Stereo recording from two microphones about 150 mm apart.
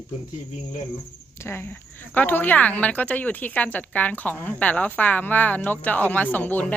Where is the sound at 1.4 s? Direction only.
15° left (ahead or behind).